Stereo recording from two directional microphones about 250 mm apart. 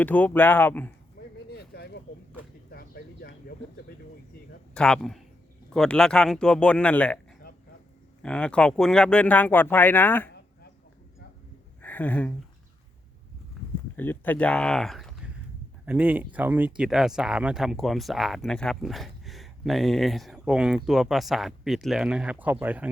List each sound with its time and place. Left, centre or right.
0.0 s speech: centre
1.5 s a sound: left
4.7 s speech: centre
8.2 s speech: centre
11.8 s speech: centre
13.6 s a sound: centre
13.9 s speech: centre